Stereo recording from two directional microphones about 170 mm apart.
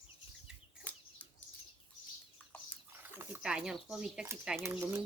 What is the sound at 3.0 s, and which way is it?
Bird, 10° right (ahead or behind).